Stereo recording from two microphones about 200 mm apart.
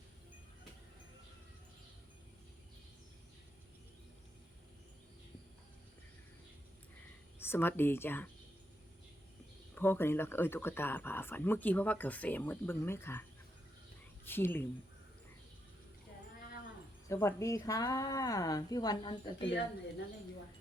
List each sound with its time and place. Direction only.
7.3 s speech: 10° left (ahead or behind)
9.7 s speech: 10° left (ahead or behind)
14.3 s speech: 10° left (ahead or behind)
17.1 s speech: 15° left (ahead or behind)